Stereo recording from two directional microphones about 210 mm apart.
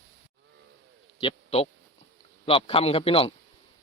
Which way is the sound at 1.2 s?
25° left (ahead or behind).